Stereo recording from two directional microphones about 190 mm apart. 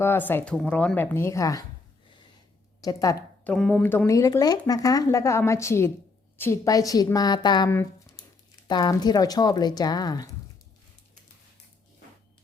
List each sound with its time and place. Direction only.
0.0 s speech: 10° left (ahead or behind)
2.8 s a woman's voice: 15° left (ahead or behind)
3.5 s speech: 5° left (ahead or behind)